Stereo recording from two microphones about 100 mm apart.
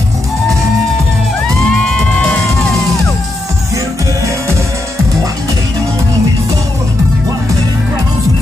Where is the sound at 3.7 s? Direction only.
30° right (ahead or behind).